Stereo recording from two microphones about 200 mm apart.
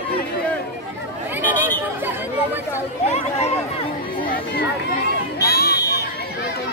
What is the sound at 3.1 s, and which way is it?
Chatter, 30° left (ahead or behind).